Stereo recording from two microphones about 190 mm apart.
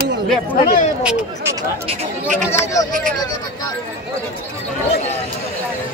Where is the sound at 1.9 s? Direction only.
40° right (ahead or behind).